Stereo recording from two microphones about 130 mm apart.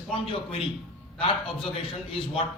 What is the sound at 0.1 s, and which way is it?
A man's voice, 45° left (ahead or behind).